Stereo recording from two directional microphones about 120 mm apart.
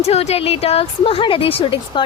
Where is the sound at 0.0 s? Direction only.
60° left (ahead or behind).